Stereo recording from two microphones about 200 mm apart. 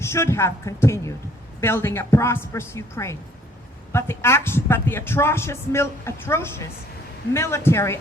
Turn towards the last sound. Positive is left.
turn(degrees=10)  # may be behind; listen again after turning